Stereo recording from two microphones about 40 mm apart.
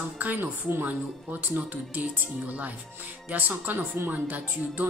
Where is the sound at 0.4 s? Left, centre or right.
Right.